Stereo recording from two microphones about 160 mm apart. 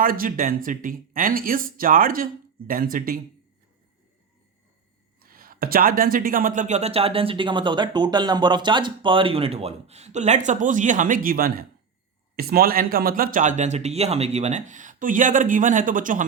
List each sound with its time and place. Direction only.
0.0 s speech: 60° right (ahead or behind)
5.2 s speech: 65° right (ahead or behind)